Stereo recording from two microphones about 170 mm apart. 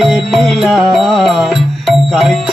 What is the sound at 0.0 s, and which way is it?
Music, centre (ahead or behind).